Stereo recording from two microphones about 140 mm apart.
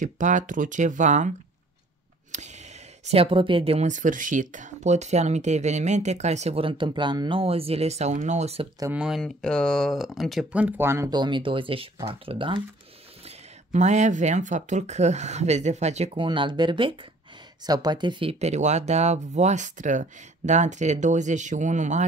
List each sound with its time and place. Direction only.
0.0 s speech: 65° right (ahead or behind)
2.3 s speech: 55° right (ahead or behind)
8.9 s speech: 5° right (ahead or behind)
9.2 s speech: 5° left (ahead or behind)
10.6 s speech: 15° right (ahead or behind)
11.1 s speech: 35° right (ahead or behind)
13.7 s speech: 55° right (ahead or behind)
16.2 s speech: 35° right (ahead or behind)
18.4 s speech: 55° right (ahead or behind)